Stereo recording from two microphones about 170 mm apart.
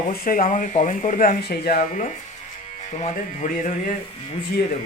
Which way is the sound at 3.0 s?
40° left (ahead or behind).